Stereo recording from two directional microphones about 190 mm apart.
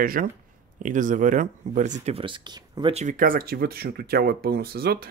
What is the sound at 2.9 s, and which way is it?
Speech, 40° right (ahead or behind).